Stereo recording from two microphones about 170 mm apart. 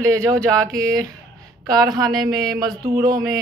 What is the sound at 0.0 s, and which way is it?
A woman's voice, 20° right (ahead or behind).